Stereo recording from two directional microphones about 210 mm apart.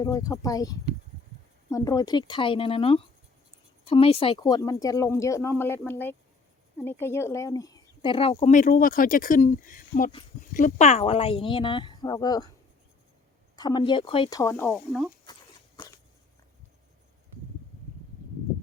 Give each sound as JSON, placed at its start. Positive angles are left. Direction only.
{"t": 0.0, "sound": "speech", "side_deg": 15}
{"t": 13.6, "sound": "speech", "side_deg": 20}
{"t": 15.2, "sound": "walk", "side_deg": 20}